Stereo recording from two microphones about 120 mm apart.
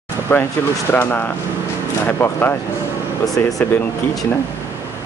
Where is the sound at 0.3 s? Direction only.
20° left (ahead or behind).